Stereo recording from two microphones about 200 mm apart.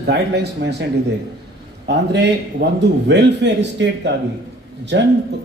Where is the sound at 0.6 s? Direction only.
60° right (ahead or behind).